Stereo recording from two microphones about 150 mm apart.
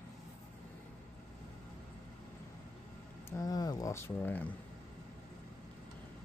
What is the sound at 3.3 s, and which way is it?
Speech, 25° left (ahead or behind).